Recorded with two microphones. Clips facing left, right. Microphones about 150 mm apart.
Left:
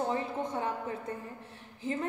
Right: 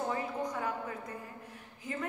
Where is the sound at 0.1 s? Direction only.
25° left (ahead or behind).